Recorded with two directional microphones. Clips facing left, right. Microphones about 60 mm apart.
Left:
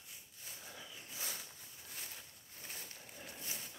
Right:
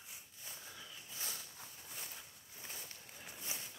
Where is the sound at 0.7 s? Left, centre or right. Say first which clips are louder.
Left 1 dB; centre.